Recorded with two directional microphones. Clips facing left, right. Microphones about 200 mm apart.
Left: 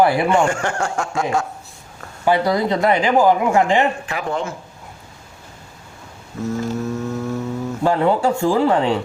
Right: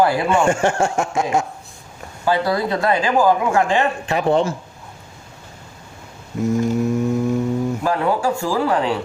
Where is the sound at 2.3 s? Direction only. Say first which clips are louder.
Left 2 dB; 20° left (ahead or behind).